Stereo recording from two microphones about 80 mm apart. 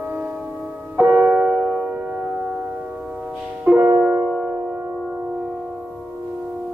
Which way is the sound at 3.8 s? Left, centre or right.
Right.